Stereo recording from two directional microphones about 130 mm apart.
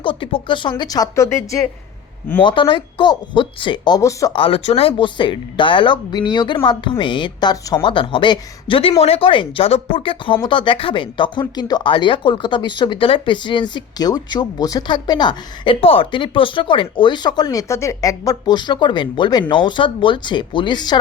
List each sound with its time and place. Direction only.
0.0 s speech: 40° left (ahead or behind); by 1.5 s 20° left (ahead or behind)
2.4 s speech: 40° left (ahead or behind)
4.4 s speech: 45° left (ahead or behind)